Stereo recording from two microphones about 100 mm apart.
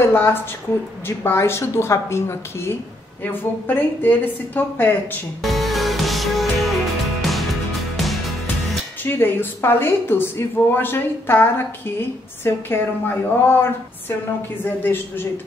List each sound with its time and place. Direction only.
0.0 s a woman's voice: 20° left (ahead or behind)
5.4 s music: centre (ahead or behind)
9.0 s a woman's voice: 20° left (ahead or behind)